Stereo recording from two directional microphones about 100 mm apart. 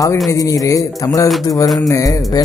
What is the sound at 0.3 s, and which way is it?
A man's voice, 35° left (ahead or behind).